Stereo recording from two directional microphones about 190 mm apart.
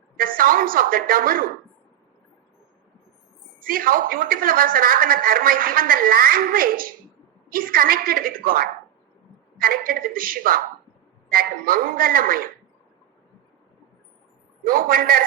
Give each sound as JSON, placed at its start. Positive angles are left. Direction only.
{"t": 0.2, "sound": "a woman's voice", "side_deg": -50}
{"t": 3.7, "sound": "a woman's voice", "side_deg": -50}
{"t": 14.6, "sound": "a woman's voice", "side_deg": -50}